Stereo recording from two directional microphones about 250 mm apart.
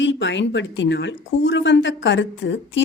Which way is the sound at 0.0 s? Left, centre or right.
Left.